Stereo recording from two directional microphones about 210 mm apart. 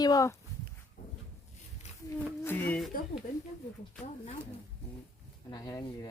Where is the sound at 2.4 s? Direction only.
10° left (ahead or behind).